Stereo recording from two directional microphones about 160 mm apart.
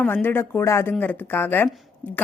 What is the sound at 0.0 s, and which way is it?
A woman's voice, 10° left (ahead or behind).